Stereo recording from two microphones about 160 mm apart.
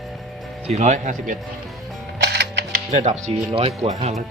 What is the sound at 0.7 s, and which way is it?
Speech, 50° right (ahead or behind).